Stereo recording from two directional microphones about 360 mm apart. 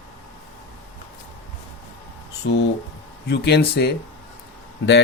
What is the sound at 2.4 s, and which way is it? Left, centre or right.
Speech, left.